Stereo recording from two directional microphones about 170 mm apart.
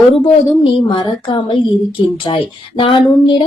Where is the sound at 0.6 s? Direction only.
30° left (ahead or behind).